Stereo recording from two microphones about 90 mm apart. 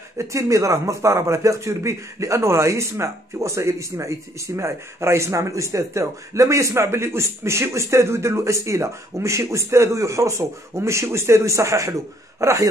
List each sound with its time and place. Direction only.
0.2 s a man's voice: 35° right (ahead or behind)